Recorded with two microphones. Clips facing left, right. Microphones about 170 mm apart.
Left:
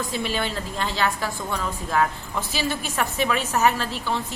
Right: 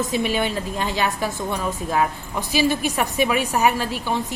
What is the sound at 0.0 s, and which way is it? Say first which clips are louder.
A woman's voice: right 5 dB; 15° right (ahead or behind).